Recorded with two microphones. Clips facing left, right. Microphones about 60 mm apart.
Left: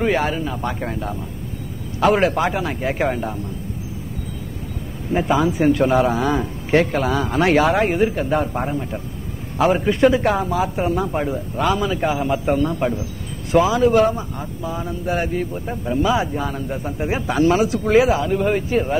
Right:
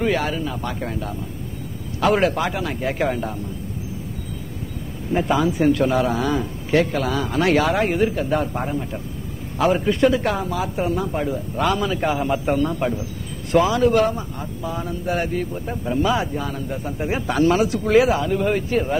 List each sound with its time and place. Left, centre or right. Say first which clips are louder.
0.4 s speech: left 2 dB; left
2.0 s speech: left 2 dB; centre
5.1 s speech: left 1 dB; centre
6.3 s a man's voice: left 2 dB; left
7.0 s speech: left 2 dB; centre
10.1 s speech: left 3 dB; centre
11.5 s speech: left 1 dB; centre